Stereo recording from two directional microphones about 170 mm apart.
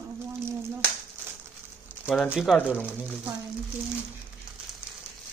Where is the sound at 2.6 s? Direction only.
10° left (ahead or behind).